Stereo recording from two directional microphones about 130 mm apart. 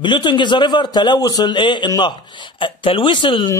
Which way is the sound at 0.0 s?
35° left (ahead or behind).